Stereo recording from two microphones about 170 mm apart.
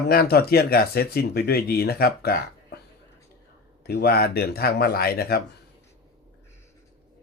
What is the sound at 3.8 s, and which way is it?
Speech, 70° left (ahead or behind).